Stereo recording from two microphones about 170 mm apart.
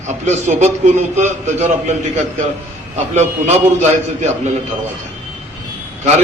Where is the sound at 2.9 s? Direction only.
40° right (ahead or behind).